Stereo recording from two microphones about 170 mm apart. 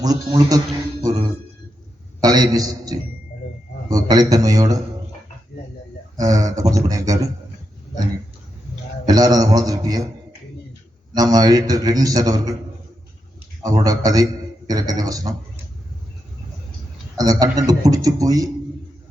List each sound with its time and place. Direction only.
0.0 s a man's voice: 25° right (ahead or behind)
2.2 s a man's voice: 20° right (ahead or behind)
6.1 s a man's voice: 20° right (ahead or behind)
9.0 s a man's voice: 20° right (ahead or behind)
11.1 s a man's voice: 20° right (ahead or behind)
13.6 s a man's voice: 20° right (ahead or behind)
17.2 s a man's voice: 20° right (ahead or behind)